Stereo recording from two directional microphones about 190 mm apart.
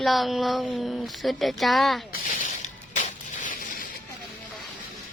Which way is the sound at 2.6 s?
40° left (ahead or behind).